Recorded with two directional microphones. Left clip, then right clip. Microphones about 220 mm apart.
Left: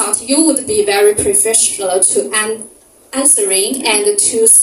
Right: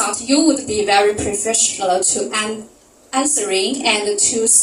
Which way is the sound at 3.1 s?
55° left (ahead or behind).